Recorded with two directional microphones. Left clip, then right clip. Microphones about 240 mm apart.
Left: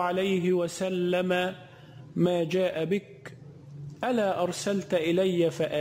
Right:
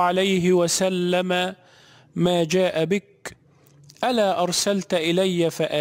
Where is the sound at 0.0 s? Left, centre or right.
Right.